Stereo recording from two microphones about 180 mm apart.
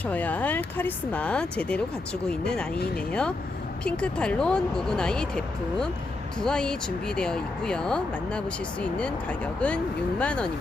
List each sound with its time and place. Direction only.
0.0 s speech: 10° left (ahead or behind)
6.4 s speech: 5° left (ahead or behind)